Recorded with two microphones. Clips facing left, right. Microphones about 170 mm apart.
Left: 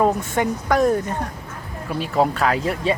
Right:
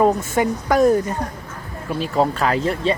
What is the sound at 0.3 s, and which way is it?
Speech, 5° right (ahead or behind).